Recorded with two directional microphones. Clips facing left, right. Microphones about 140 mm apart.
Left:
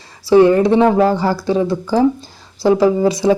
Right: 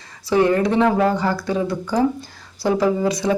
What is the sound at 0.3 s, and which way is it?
Speech, 30° left (ahead or behind).